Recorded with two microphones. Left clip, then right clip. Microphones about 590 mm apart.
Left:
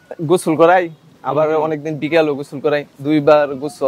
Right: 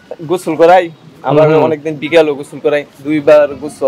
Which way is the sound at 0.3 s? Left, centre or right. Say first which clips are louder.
Right 4 dB; left.